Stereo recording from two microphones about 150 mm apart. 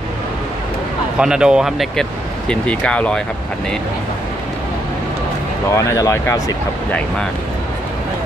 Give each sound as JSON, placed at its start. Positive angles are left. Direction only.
{"t": 1.1, "sound": "speech", "side_deg": -5}
{"t": 5.7, "sound": "speech", "side_deg": 20}